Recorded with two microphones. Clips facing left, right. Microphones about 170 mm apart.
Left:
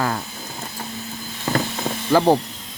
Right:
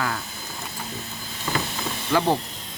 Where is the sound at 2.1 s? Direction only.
40° left (ahead or behind).